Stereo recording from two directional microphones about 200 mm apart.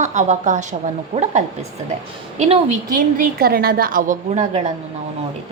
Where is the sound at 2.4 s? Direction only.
35° right (ahead or behind).